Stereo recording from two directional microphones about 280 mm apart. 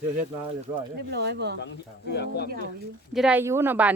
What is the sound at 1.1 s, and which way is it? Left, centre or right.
Speech, right.